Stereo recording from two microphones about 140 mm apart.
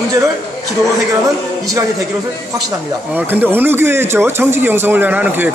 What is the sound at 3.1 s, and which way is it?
Speech, 15° right (ahead or behind).